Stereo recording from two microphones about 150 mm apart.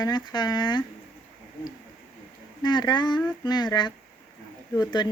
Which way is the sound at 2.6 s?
30° left (ahead or behind).